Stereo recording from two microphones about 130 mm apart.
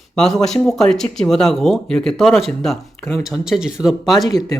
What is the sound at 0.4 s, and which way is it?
Speech, 5° left (ahead or behind).